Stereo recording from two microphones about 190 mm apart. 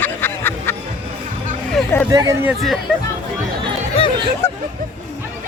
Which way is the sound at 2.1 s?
15° right (ahead or behind).